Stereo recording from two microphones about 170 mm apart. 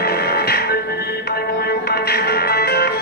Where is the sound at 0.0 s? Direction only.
70° left (ahead or behind).